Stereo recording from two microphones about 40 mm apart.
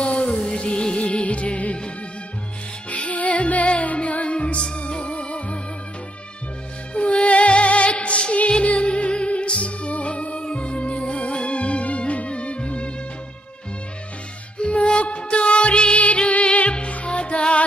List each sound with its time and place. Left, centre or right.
0.0 s music: left
6.9 s music: left
14.6 s music: left